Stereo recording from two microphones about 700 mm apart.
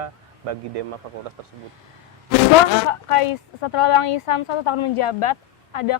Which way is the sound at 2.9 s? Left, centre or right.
Left.